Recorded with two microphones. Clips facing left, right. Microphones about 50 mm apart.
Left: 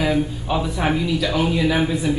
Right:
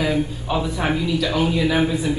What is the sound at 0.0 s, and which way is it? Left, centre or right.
Speech, centre.